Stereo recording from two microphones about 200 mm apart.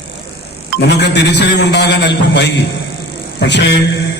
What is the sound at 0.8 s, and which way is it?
A man's voice, 60° left (ahead or behind).